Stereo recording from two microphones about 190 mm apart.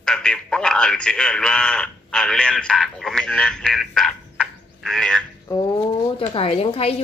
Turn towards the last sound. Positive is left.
turn(degrees=30)  # may be behind; listen again after turning